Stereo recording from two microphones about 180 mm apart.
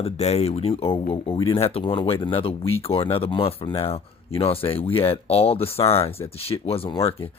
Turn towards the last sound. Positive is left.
turn(degrees=30)  # may be behind; listen again after turning